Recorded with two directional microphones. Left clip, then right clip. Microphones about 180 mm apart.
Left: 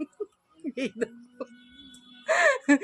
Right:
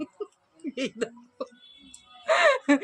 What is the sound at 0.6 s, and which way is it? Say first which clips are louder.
Speech: even; 5° left (ahead or behind).